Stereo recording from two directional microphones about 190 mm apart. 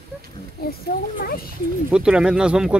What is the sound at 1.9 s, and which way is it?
Speech, 5° right (ahead or behind).